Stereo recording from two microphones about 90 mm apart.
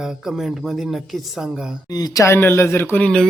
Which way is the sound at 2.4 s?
25° left (ahead or behind).